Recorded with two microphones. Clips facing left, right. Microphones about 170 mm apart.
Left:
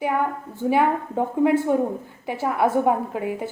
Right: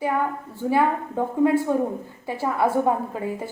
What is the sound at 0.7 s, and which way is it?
A woman's voice, 20° left (ahead or behind).